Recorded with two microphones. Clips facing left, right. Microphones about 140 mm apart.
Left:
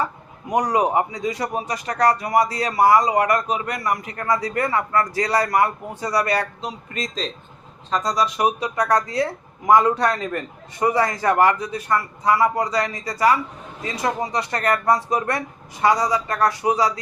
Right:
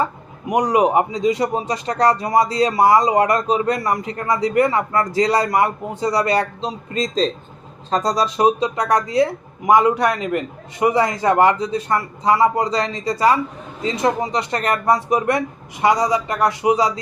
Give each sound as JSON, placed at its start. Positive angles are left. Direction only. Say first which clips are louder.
{"t": 0.0, "sound": "speech", "louder": "right 4 dB", "side_deg": -15}